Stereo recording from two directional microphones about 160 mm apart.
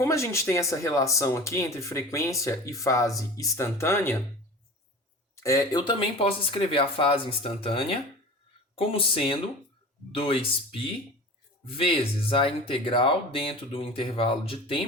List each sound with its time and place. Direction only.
0.0 s speech: 20° left (ahead or behind)
5.3 s speech: 20° left (ahead or behind)